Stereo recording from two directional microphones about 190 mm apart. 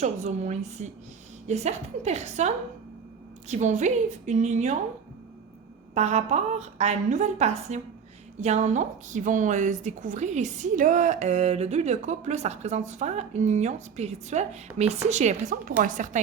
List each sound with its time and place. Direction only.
0.0 s a woman's voice: 35° right (ahead or behind)
3.5 s a woman's voice: 40° right (ahead or behind)
5.9 s a woman's voice: 35° right (ahead or behind)